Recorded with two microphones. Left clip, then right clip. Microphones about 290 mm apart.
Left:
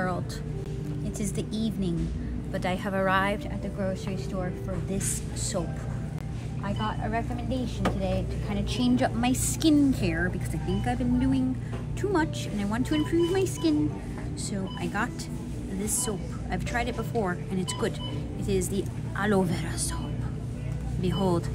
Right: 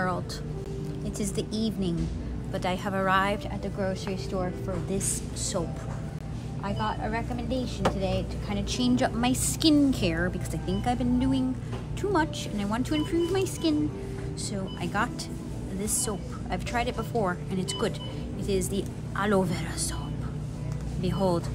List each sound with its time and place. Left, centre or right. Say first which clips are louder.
1.2 s speech: right 2 dB; centre
6.6 s speech: right 2 dB; centre
21.0 s speech: right 1 dB; centre